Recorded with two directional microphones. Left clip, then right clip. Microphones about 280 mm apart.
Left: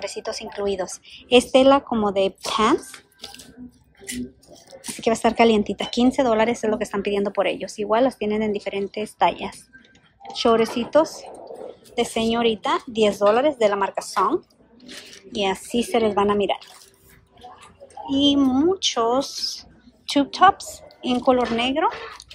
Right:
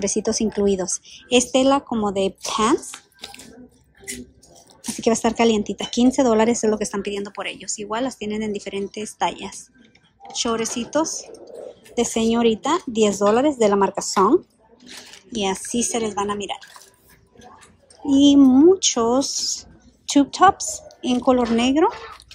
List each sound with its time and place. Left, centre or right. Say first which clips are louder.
0.0 s speech: right 7 dB; right
4.9 s speech: left 1 dB; centre
18.0 s speech: right 5 dB; centre